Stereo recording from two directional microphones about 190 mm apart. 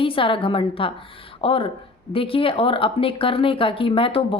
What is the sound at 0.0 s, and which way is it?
A woman's voice, 30° left (ahead or behind).